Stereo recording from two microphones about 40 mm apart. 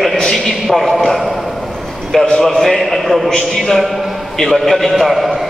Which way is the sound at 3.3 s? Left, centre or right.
Centre.